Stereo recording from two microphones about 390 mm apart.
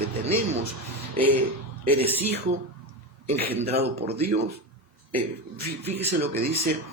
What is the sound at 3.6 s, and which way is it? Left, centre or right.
Speech, centre.